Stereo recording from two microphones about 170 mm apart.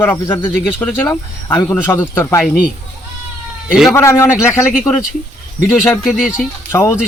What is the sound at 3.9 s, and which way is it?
Speech, 15° left (ahead or behind).